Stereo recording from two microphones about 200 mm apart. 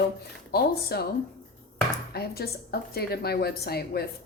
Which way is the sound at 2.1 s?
50° left (ahead or behind).